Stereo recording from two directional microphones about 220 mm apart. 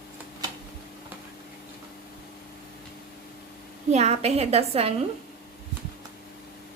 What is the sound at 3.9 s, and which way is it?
A woman's voice, 30° right (ahead or behind).